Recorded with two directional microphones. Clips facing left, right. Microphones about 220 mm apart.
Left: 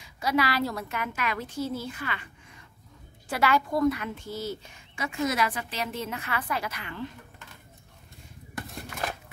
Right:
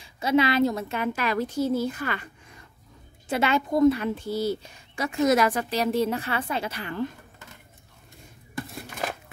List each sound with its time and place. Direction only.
0.0 s a woman's voice: 25° right (ahead or behind); by 2.2 s 45° right (ahead or behind)
3.3 s a woman's voice: 25° right (ahead or behind); by 7.1 s 40° right (ahead or behind)